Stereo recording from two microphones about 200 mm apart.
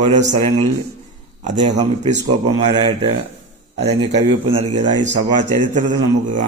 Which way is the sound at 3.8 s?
35° right (ahead or behind).